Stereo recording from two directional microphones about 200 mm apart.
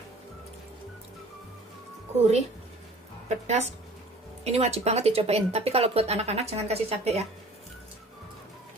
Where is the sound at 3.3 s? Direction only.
35° right (ahead or behind).